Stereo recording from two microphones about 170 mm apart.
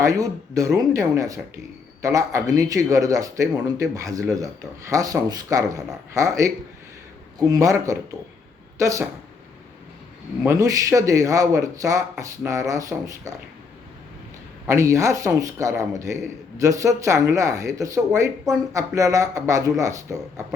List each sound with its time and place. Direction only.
0.0 s speech: 20° right (ahead or behind)
10.4 s speech: 20° right (ahead or behind)
14.7 s speech: 15° right (ahead or behind)